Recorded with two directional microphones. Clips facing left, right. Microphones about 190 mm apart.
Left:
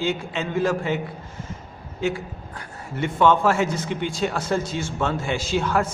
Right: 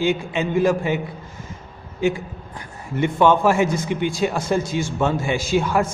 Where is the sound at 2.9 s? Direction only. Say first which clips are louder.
Right 2 dB; 15° right (ahead or behind).